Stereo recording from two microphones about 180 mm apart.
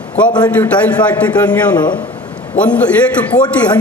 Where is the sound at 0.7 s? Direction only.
10° left (ahead or behind).